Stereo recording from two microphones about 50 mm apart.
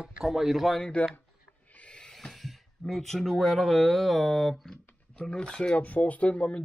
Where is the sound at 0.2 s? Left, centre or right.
Centre.